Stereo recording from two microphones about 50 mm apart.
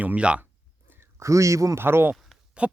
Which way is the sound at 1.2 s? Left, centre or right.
Right.